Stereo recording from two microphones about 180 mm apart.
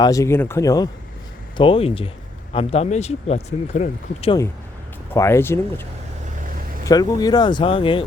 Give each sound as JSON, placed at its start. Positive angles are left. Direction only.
{"t": 0.0, "sound": "speech", "side_deg": 20}
{"t": 5.1, "sound": "speech", "side_deg": 15}
{"t": 6.8, "sound": "speech", "side_deg": 20}